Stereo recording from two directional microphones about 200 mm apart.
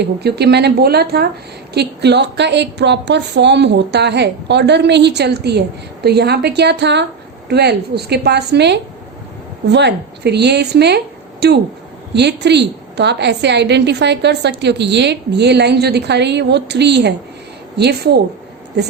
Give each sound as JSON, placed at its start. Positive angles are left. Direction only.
{"t": 0.0, "sound": "a woman's voice", "side_deg": -55}